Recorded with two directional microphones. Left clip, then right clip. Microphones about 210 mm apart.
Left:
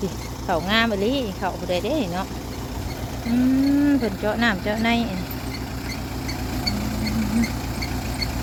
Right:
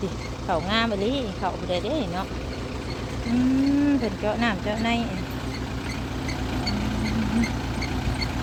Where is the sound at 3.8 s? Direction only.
20° left (ahead or behind).